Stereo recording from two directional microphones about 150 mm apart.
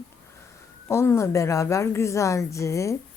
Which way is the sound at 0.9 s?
20° left (ahead or behind).